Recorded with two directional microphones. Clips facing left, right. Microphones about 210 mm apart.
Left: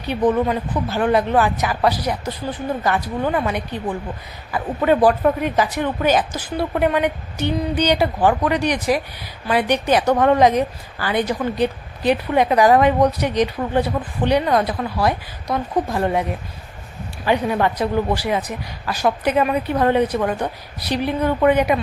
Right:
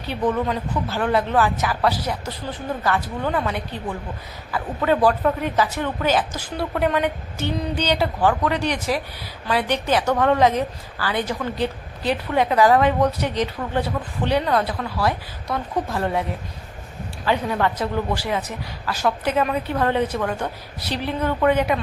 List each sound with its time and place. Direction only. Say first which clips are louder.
0.3 s a woman's voice: left 4 dB; 15° left (ahead or behind)
17.2 s a woman's voice: left 3 dB; 15° left (ahead or behind)